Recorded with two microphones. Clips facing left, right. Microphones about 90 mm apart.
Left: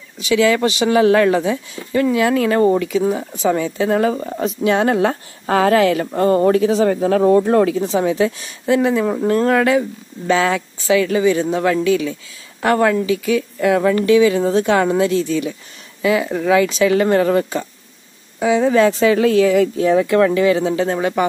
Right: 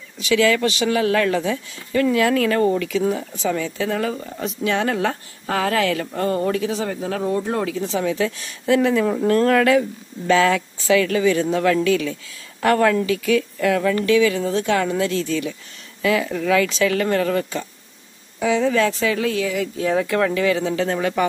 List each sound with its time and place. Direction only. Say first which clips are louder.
0.2 s speech: left 3 dB; 15° left (ahead or behind)
3.4 s speech: left 6 dB; 25° left (ahead or behind); by 7.3 s 50° left (ahead or behind)
7.3 s speech: left 9 dB; 65° left (ahead or behind)
8.0 s speech: left 4 dB; 20° left (ahead or behind)
8.6 s speech: left 2 dB; 10° left (ahead or behind); by 15.0 s 30° left (ahead or behind)
15.0 s speech: left 4 dB; 15° left (ahead or behind)
16.6 s speech: left 4 dB; 10° left (ahead or behind)
16.9 s speech: left 5 dB; 25° left (ahead or behind)
18.9 s speech: left 8 dB; 40° left (ahead or behind)
20.6 s speech: left 3 dB; 20° left (ahead or behind)